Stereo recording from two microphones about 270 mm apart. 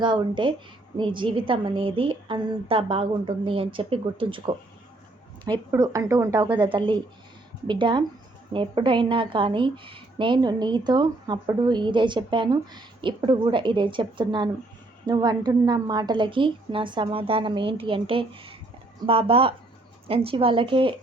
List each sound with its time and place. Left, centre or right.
0.0 s a woman's voice: centre